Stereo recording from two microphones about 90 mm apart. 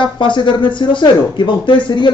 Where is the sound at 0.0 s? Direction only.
60° left (ahead or behind).